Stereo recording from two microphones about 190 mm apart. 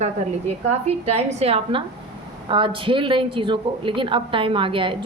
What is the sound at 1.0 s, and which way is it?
A woman's voice, 35° right (ahead or behind).